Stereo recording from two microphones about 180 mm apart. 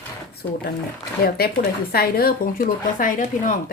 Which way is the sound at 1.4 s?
60° left (ahead or behind).